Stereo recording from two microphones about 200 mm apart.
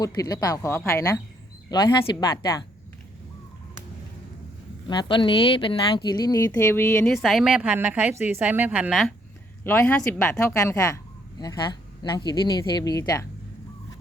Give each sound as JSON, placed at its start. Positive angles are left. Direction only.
{"t": 0.0, "sound": "a woman's voice", "side_deg": 20}
{"t": 4.9, "sound": "speech", "side_deg": 25}
{"t": 7.2, "sound": "a woman's voice", "side_deg": 0}
{"t": 9.6, "sound": "speech", "side_deg": 10}